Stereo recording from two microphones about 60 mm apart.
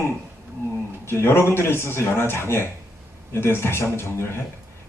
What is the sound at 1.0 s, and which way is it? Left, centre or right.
Speech, left.